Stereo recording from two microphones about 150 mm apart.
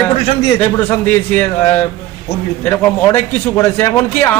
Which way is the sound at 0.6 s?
10° left (ahead or behind).